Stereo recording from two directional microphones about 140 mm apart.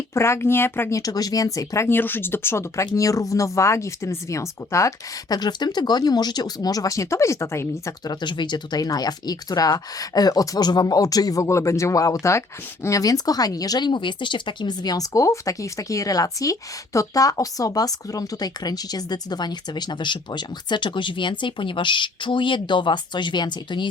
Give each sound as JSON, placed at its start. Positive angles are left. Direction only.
{"t": 0.1, "sound": "speech", "side_deg": 20}